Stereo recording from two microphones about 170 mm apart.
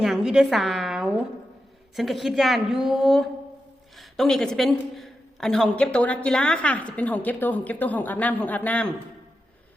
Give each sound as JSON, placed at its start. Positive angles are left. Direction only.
{"t": 0.0, "sound": "a woman's voice", "side_deg": 0}